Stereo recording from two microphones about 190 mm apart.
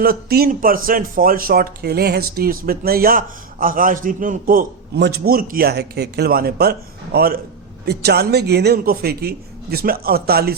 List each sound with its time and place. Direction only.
0.0 s a man's voice: 55° right (ahead or behind)